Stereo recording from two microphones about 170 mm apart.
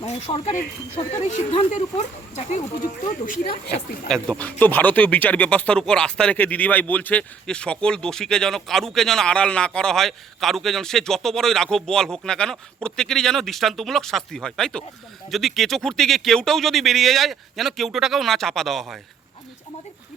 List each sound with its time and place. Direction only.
0.3 s speech: 30° left (ahead or behind)
1.2 s speech: 40° left (ahead or behind)
3.2 s speech: 65° left (ahead or behind)
4.1 s speech: 5° left (ahead or behind)